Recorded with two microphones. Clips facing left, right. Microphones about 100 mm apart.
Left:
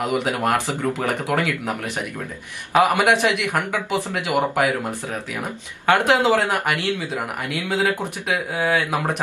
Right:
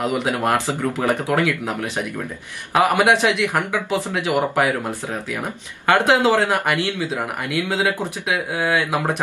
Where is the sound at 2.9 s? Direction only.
20° right (ahead or behind).